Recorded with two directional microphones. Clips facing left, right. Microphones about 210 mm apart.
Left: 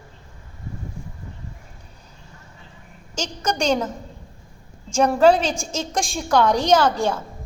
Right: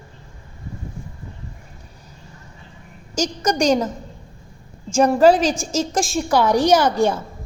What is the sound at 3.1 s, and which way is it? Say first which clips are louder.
Speech: right 5 dB; 10° right (ahead or behind).